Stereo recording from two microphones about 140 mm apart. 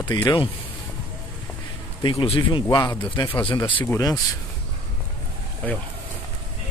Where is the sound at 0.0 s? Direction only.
30° left (ahead or behind).